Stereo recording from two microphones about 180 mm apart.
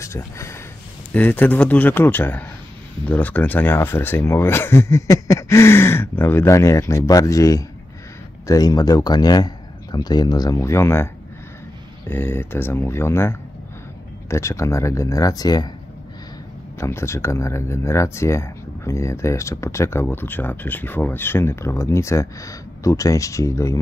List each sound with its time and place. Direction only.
0.0 s a sound: 15° left (ahead or behind)
1.1 s speech: 10° left (ahead or behind)
12.1 s speech: 10° left (ahead or behind)
16.8 s speech: 15° left (ahead or behind)